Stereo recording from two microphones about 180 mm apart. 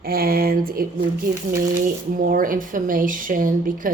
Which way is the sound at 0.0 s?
55° right (ahead or behind).